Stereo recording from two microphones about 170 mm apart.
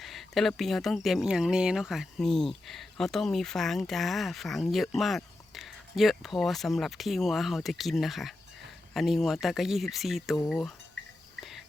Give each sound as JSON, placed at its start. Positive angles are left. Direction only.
{"t": 0.0, "sound": "speech", "side_deg": 0}
{"t": 11.0, "sound": "a sound", "side_deg": -90}
{"t": 11.3, "sound": "cricket", "side_deg": 0}